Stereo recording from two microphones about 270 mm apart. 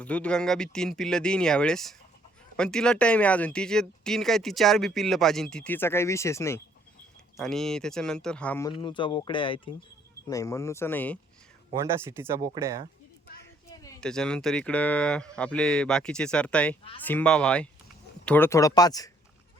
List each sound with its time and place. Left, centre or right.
0.0 s speech: centre
8.7 s speech: centre
11.7 s speech: centre
13.4 s speech: centre